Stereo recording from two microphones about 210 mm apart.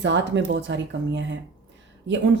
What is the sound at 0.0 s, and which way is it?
Speech, 55° right (ahead or behind).